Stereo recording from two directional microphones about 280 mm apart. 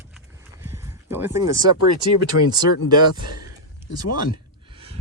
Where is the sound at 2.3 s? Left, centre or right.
Left.